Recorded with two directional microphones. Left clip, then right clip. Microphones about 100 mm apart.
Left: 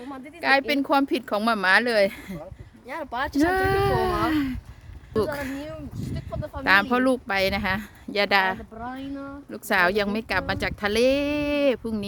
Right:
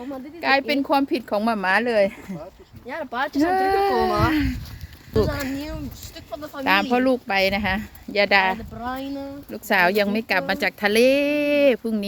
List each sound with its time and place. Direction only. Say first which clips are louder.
0.0 s speech: right 2 dB; 20° left (ahead or behind)
1.4 s speech: left 1 dB; 40° left (ahead or behind)
2.8 s speech: right 3 dB; 30° left (ahead or behind)
5.1 s speech: right 3 dB; 35° left (ahead or behind)
6.3 s speech: right 1 dB; 15° left (ahead or behind)
6.9 s speech: right 2 dB; 35° left (ahead or behind)
8.8 s a woman's voice: right 5 dB; centre (ahead or behind)
9.5 s a woman's voice: right 2 dB; 15° left (ahead or behind)